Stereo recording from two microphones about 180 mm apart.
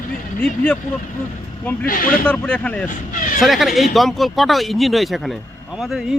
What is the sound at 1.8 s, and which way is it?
Speech, 50° left (ahead or behind).